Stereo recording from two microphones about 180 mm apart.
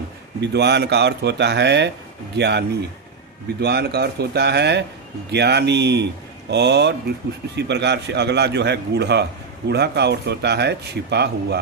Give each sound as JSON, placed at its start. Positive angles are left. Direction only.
{"t": 0.3, "sound": "a man's voice", "side_deg": -70}